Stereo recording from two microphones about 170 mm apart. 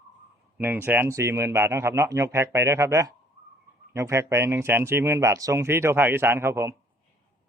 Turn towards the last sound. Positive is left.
turn(degrees=-15)  # may be behind; listen again after turning